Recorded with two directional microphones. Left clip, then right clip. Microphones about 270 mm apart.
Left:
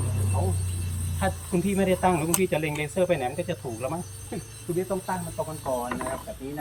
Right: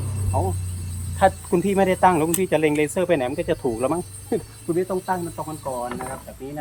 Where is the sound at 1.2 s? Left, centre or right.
Centre.